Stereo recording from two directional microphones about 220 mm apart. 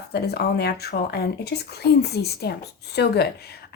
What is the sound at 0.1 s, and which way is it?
Speech, 45° left (ahead or behind).